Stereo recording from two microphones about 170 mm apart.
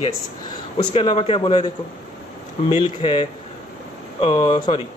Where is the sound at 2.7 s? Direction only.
30° left (ahead or behind).